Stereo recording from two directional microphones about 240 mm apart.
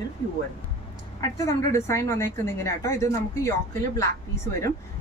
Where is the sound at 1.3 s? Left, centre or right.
Centre.